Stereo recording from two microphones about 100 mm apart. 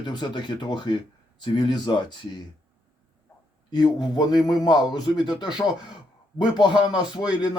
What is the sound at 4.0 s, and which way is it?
Speech, 45° left (ahead or behind).